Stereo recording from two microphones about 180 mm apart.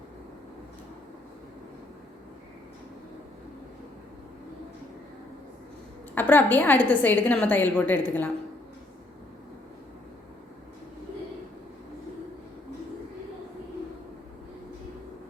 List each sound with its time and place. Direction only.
6.1 s a woman's voice: 10° left (ahead or behind)